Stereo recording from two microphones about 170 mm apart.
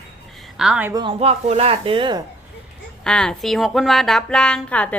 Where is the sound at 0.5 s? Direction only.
5° right (ahead or behind).